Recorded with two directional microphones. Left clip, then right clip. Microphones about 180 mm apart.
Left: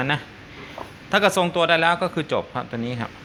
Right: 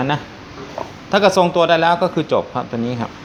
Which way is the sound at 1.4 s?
5° right (ahead or behind).